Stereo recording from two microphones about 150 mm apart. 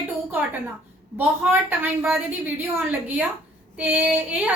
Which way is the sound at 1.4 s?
10° right (ahead or behind).